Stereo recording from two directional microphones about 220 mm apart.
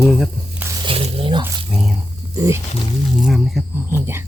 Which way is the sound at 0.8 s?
25° right (ahead or behind).